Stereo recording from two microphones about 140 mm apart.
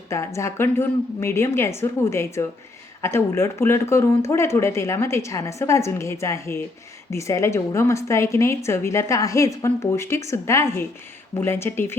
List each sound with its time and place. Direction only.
0.3 s a woman's voice: 20° left (ahead or behind)